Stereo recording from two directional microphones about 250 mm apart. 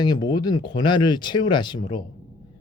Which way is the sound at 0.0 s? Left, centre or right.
Centre.